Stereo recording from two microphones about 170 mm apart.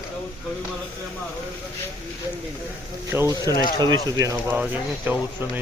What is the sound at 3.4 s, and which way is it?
Speech, 20° left (ahead or behind).